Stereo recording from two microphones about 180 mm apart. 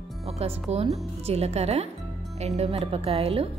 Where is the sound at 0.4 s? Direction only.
35° right (ahead or behind).